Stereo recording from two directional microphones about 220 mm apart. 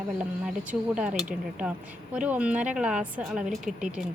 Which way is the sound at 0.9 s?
5° right (ahead or behind).